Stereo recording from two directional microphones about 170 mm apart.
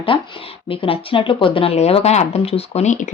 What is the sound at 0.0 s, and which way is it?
Speech, 30° left (ahead or behind).